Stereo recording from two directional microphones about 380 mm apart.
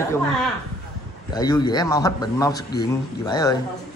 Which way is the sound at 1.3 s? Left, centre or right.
Centre.